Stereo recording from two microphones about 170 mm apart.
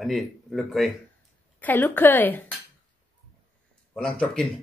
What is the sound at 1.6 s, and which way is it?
Speech, 10° left (ahead or behind).